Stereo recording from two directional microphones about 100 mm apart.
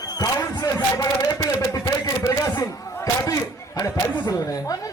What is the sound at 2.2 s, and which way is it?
Chatter, 35° left (ahead or behind).